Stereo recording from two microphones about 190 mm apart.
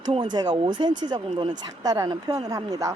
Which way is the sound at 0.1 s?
25° right (ahead or behind).